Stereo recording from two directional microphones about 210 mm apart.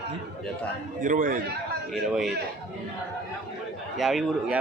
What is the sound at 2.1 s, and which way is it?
Speech, centre (ahead or behind).